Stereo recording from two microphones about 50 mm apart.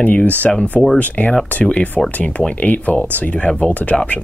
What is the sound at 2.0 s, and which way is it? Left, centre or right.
Speech, centre.